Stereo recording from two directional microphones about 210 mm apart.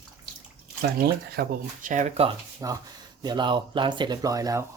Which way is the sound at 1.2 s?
45° right (ahead or behind).